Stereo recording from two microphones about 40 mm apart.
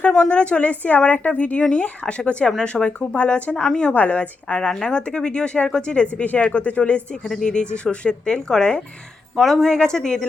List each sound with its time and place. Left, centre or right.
0.2 s a woman's voice: left
3.5 s a woman's voice: centre
3.9 s a woman's voice: left
7.4 s speech: left
9.4 s a woman's voice: centre
9.6 s a woman's voice: centre